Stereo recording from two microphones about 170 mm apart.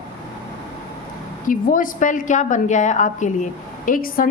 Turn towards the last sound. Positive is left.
turn(degrees=55)  # may be behind; listen again after turning